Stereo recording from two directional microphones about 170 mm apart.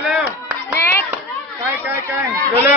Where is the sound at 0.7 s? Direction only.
15° left (ahead or behind).